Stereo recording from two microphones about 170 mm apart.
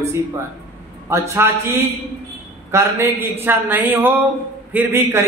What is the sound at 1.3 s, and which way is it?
Speech, 15° right (ahead or behind).